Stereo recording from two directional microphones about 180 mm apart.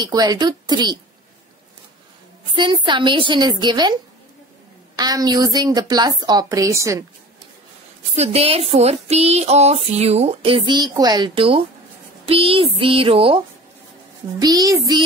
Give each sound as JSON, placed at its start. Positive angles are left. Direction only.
{"t": 0.0, "sound": "a woman's voice", "side_deg": -20}
{"t": 2.5, "sound": "a woman's voice", "side_deg": -25}
{"t": 8.1, "sound": "a sound", "side_deg": -35}
{"t": 14.4, "sound": "a woman's voice", "side_deg": -20}